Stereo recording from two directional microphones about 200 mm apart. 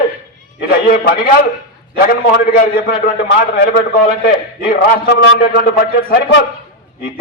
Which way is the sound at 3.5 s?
45° left (ahead or behind).